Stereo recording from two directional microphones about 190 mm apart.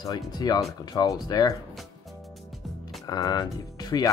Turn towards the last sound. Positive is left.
turn(degrees=20)  # may be behind; listen again after turning